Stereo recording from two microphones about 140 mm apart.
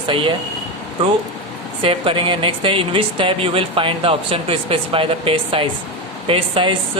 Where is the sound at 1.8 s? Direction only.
40° right (ahead or behind).